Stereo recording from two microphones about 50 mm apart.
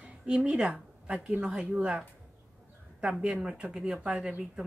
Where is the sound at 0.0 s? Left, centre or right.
Centre.